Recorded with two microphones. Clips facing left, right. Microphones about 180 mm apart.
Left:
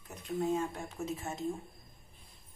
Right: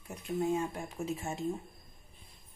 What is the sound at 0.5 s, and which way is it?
Speech, 15° right (ahead or behind).